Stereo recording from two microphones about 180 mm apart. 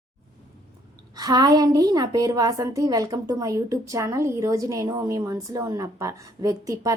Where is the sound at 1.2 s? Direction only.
20° right (ahead or behind).